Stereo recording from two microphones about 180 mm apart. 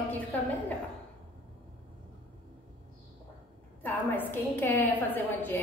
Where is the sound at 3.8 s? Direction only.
10° left (ahead or behind).